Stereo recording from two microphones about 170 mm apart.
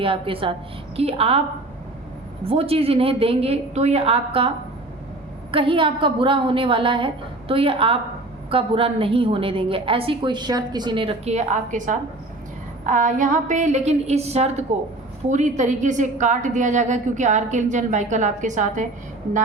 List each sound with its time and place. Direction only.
0.0 s a woman's voice: 30° right (ahead or behind)
2.5 s a woman's voice: 35° right (ahead or behind)